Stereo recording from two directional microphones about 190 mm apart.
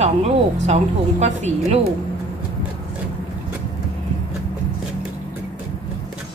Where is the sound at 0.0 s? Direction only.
35° right (ahead or behind).